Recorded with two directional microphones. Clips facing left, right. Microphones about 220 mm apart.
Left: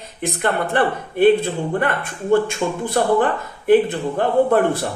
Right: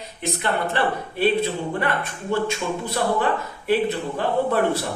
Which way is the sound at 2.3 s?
50° left (ahead or behind).